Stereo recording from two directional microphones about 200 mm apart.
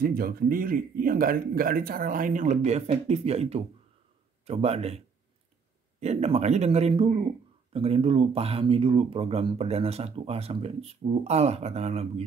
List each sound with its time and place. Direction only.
0.0 s speech: 50° right (ahead or behind); by 12.3 s 30° right (ahead or behind)